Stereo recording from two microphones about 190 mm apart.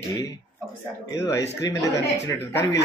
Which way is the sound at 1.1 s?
15° left (ahead or behind).